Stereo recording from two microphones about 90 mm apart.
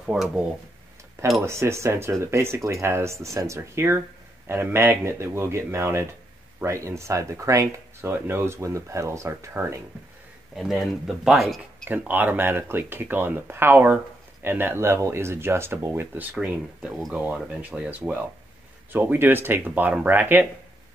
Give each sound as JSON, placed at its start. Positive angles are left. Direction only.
{"t": 0.0, "sound": "speech", "side_deg": -5}
{"t": 1.4, "sound": "speech", "side_deg": -30}
{"t": 8.1, "sound": "speech", "side_deg": -25}
{"t": 10.5, "sound": "speech", "side_deg": 0}
{"t": 11.9, "sound": "speech", "side_deg": -20}
{"t": 16.3, "sound": "speech", "side_deg": -10}